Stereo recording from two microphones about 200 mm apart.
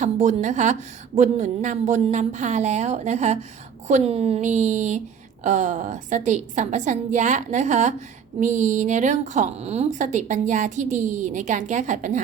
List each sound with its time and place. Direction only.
0.0 s speech: 35° right (ahead or behind)